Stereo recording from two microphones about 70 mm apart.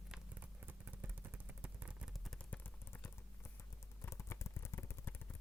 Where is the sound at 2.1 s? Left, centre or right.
Centre.